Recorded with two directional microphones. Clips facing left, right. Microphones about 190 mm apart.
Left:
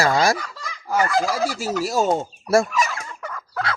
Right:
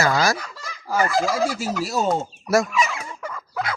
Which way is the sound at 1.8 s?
45° left (ahead or behind).